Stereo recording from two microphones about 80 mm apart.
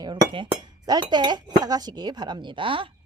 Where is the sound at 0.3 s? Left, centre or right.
Right.